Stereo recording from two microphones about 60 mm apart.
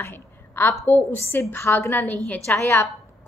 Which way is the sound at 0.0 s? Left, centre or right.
Left.